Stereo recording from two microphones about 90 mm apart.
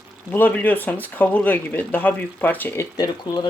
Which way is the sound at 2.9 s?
50° left (ahead or behind).